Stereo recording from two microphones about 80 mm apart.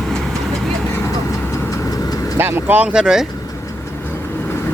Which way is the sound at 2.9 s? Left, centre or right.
Centre.